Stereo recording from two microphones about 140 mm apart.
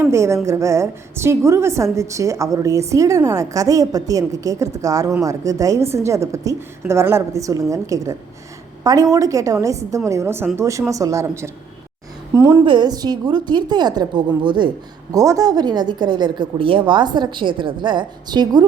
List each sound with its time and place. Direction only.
0.0 s a woman's voice: 20° right (ahead or behind)
12.6 s a woman's voice: 30° right (ahead or behind)